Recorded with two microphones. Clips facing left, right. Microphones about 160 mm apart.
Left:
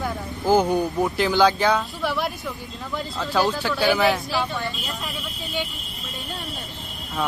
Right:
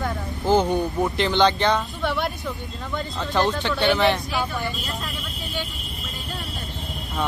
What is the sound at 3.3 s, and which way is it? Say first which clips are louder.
Speech: even; 5° left (ahead or behind).